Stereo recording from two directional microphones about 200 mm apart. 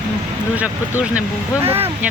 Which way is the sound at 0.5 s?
5° right (ahead or behind).